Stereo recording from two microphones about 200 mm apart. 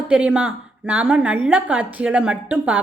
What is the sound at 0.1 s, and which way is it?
A woman's voice, 5° right (ahead or behind).